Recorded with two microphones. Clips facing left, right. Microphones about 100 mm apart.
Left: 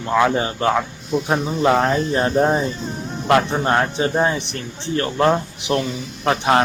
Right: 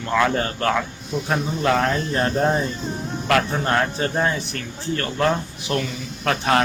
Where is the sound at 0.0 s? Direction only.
20° left (ahead or behind).